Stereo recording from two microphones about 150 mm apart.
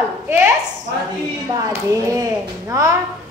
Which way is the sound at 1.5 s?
25° right (ahead or behind).